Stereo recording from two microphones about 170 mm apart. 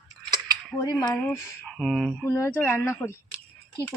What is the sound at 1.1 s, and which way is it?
Speech, 5° left (ahead or behind).